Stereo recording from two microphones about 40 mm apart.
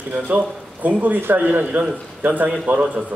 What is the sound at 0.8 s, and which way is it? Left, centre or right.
A man's voice, right.